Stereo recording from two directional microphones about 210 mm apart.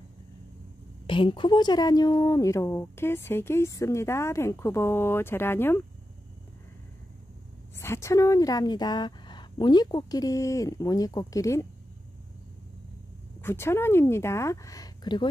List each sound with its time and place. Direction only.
1.0 s a woman's voice: 25° left (ahead or behind)
7.8 s a woman's voice: 15° left (ahead or behind)
13.4 s a woman's voice: 10° left (ahead or behind)